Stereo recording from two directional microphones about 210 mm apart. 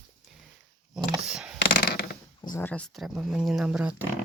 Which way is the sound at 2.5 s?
10° left (ahead or behind).